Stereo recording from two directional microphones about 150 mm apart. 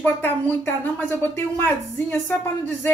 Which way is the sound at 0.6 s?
15° left (ahead or behind).